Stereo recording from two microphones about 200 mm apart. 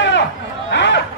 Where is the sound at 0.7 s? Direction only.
65° left (ahead or behind).